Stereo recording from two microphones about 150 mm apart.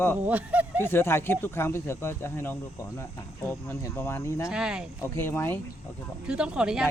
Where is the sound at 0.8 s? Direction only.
15° left (ahead or behind).